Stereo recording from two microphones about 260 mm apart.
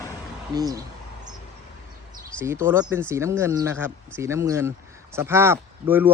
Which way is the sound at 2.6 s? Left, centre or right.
Centre.